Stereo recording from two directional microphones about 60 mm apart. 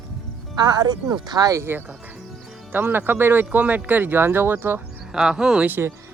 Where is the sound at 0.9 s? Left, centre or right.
Right.